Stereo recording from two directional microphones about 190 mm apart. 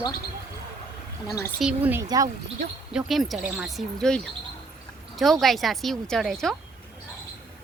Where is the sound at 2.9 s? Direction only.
Centre (ahead or behind).